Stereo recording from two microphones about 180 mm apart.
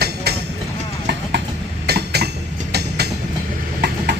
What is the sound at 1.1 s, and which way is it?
Train, 75° right (ahead or behind).